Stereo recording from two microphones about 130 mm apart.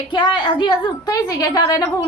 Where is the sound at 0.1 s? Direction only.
35° left (ahead or behind).